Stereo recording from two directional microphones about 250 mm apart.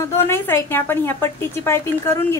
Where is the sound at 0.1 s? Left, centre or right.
Centre.